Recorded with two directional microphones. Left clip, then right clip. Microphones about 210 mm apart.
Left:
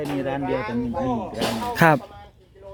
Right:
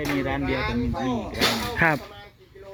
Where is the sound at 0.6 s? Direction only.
45° right (ahead or behind).